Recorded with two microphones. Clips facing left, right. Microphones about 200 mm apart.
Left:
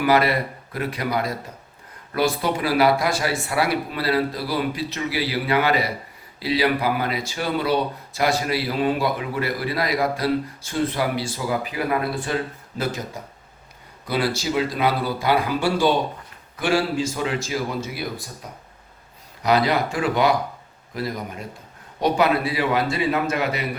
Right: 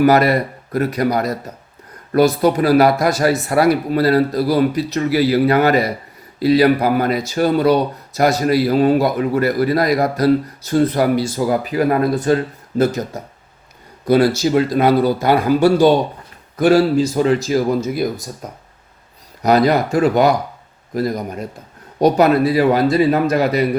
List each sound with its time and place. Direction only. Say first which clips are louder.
0.0 s speech: right 6 dB; 45° right (ahead or behind)
14.1 s speech: right 10 dB; 45° right (ahead or behind)
19.4 s speech: right 6 dB; 45° right (ahead or behind)